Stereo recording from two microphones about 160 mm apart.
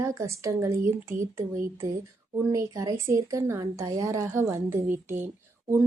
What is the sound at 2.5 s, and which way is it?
A woman's voice, 20° right (ahead or behind).